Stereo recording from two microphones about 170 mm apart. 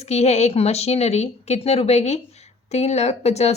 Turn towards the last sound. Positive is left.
turn(degrees=40)  # may be behind; listen again after turning